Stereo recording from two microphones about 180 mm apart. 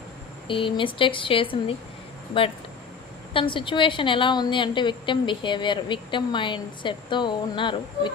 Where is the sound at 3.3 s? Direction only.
30° left (ahead or behind).